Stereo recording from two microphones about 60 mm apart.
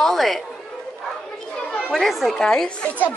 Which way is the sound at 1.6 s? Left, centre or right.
Centre.